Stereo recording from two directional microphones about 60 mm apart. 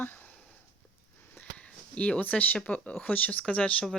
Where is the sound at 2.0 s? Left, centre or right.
Left.